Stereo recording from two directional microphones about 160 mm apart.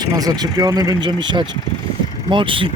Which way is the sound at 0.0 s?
20° right (ahead or behind).